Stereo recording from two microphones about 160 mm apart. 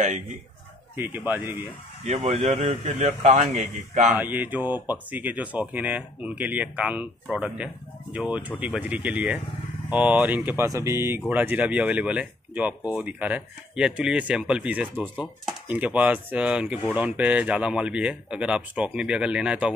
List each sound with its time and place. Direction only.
0.0 s a man's voice: 50° right (ahead or behind)
0.9 s speech: 10° right (ahead or behind)
2.0 s a man's voice: 45° right (ahead or behind)
4.2 s speech: 10° right (ahead or behind)